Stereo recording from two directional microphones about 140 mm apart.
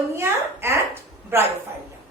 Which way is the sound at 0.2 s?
20° right (ahead or behind).